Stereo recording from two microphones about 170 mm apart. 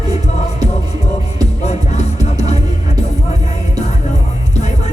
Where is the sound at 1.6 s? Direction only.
40° left (ahead or behind).